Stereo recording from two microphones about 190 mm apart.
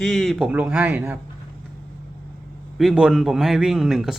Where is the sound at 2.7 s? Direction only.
5° right (ahead or behind).